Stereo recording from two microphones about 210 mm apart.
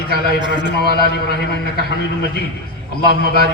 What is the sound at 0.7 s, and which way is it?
Speech, 50° left (ahead or behind).